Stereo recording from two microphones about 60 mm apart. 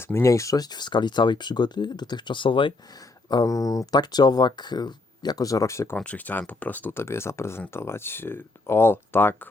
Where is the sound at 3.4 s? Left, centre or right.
Left.